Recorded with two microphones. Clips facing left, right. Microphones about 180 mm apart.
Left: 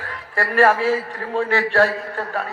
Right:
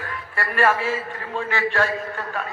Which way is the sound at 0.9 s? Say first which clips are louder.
Left 5 dB; 35° left (ahead or behind).